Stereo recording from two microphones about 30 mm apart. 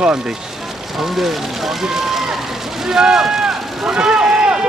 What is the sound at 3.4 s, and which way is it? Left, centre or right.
Run, right.